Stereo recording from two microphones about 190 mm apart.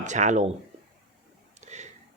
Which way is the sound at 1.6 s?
35° right (ahead or behind).